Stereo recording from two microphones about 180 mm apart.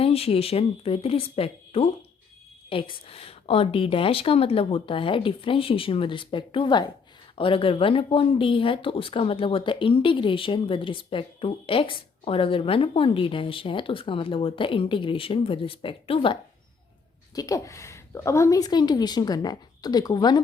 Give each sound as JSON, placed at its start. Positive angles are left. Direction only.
{"t": 0.0, "sound": "a woman's voice", "side_deg": 35}
{"t": 17.3, "sound": "speech", "side_deg": 20}